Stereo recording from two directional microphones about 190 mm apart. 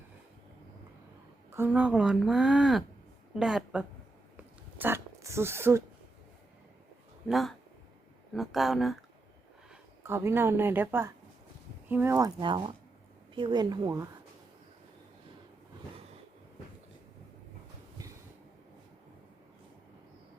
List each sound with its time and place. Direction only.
1.5 s a woman's voice: 10° right (ahead or behind)
4.4 s a sound: 10° right (ahead or behind)
7.3 s a woman's voice: centre (ahead or behind)
10.0 s speech: 15° right (ahead or behind)